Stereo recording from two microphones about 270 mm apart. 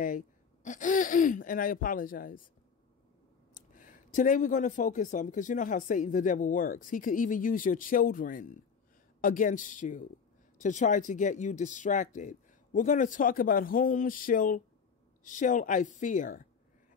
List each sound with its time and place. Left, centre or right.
0.7 s speech: left
3.5 s speech: left